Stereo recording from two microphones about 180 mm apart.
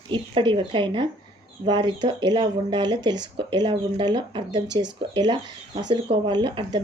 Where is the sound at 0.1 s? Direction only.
25° right (ahead or behind).